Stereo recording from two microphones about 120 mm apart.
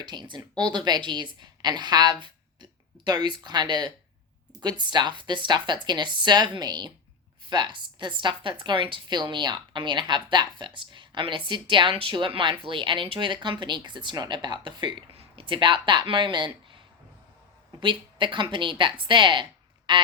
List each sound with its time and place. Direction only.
0.0 s a woman's voice: 35° right (ahead or behind)